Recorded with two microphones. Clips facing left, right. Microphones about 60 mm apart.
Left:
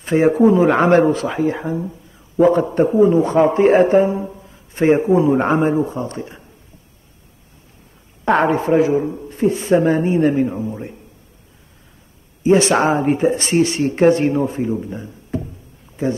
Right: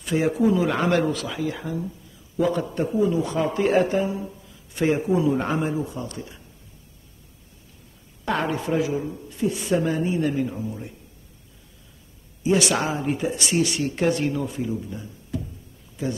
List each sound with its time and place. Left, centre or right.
0.0 s speech: left
8.3 s speech: left
12.4 s speech: left